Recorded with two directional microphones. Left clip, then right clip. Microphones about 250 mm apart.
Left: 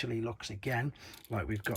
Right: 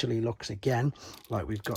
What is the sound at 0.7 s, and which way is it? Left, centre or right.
Speech, centre.